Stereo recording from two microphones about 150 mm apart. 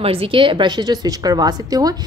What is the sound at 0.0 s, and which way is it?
A woman's voice, 40° right (ahead or behind).